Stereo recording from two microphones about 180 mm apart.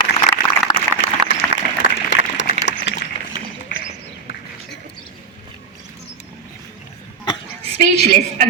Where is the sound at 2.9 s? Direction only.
90° left.